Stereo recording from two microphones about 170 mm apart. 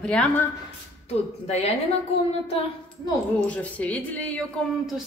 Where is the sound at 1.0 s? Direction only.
40° left (ahead or behind).